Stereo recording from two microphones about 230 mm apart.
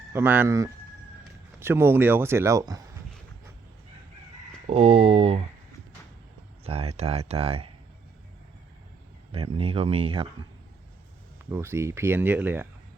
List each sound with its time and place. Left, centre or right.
0.1 s speech: centre
4.6 s speech: right
6.7 s speech: right
9.3 s speech: right
11.5 s speech: centre